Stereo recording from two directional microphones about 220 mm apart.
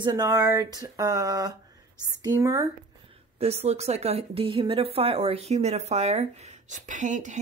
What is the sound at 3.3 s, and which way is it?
Speech, 30° right (ahead or behind).